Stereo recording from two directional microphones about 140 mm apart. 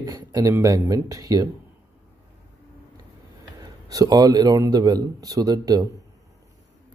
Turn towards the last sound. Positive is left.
turn(degrees=-25)  # may be behind; listen again after turning